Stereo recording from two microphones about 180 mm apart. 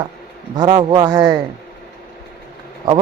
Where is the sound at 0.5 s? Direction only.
25° right (ahead or behind).